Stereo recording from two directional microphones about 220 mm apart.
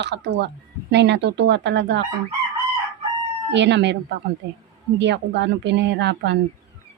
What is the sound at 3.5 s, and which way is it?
Speech, 55° right (ahead or behind).